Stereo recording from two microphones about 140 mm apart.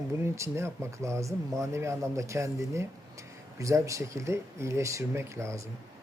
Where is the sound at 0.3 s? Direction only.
20° right (ahead or behind).